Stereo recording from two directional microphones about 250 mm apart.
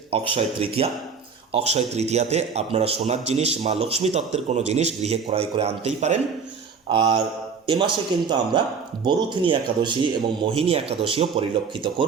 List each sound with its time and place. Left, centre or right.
0.1 s a man's voice: right